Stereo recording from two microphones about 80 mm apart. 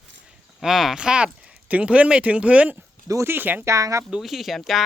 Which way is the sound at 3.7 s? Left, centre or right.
Right.